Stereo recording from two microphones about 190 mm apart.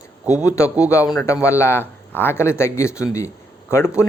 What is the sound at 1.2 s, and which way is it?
A man's voice, 15° left (ahead or behind).